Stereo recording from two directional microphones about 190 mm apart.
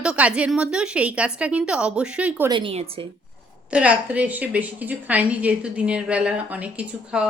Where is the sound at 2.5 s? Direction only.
25° right (ahead or behind).